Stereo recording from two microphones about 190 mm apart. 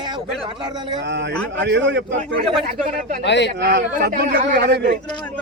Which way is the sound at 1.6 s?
65° right (ahead or behind).